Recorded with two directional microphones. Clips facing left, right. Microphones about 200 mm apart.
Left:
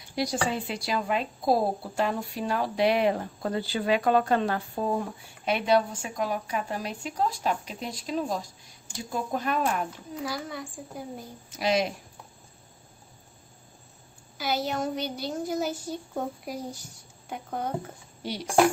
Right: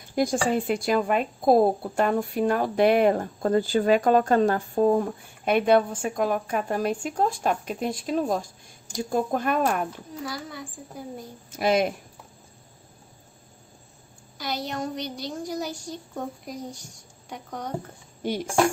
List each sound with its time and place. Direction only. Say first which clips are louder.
0.1 s speech: right 5 dB; 50° right (ahead or behind)
10.2 s a woman's voice: left 1 dB; centre (ahead or behind)
11.5 s a woman's voice: right 4 dB; 55° right (ahead or behind)
14.4 s a woman's voice: left 2 dB; 5° left (ahead or behind)
17.3 s a woman's voice: left 2 dB; 5° left (ahead or behind)
18.2 s speech: right 6 dB; 50° right (ahead or behind)